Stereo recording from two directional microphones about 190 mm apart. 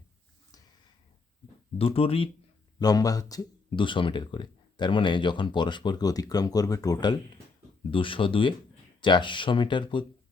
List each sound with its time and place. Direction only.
1.8 s speech: 30° left (ahead or behind)